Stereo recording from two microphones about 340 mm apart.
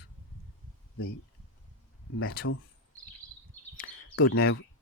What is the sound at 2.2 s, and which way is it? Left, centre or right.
Speech, left.